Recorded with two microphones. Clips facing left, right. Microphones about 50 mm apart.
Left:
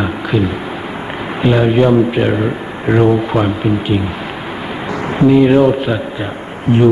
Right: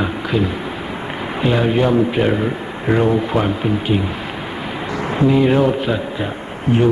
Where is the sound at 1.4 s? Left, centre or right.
Left.